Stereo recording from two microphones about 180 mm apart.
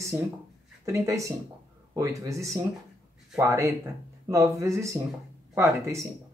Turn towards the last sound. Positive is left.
turn(degrees=-15)  # may be behind; listen again after turning